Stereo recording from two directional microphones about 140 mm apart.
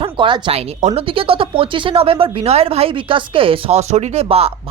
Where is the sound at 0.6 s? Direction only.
45° right (ahead or behind).